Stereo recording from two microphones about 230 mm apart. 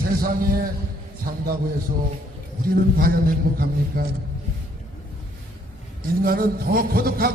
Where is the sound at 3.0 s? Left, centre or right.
Right.